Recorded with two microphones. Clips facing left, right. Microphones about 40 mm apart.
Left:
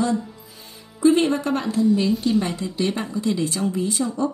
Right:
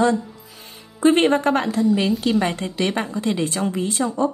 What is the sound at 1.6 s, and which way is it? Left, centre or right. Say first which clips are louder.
Speech: even; right.